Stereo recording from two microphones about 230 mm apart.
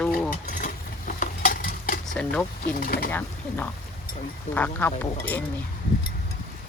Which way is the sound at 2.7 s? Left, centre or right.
Left.